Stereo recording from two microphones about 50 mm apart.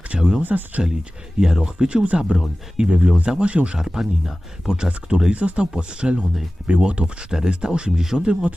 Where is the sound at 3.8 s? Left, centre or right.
Centre.